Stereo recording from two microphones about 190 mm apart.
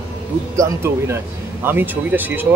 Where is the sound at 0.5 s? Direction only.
15° right (ahead or behind).